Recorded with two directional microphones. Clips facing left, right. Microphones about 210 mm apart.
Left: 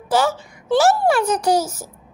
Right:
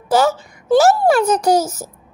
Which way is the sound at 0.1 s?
40° right (ahead or behind).